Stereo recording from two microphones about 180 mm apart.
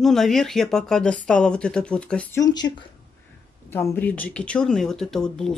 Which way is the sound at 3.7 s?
10° left (ahead or behind).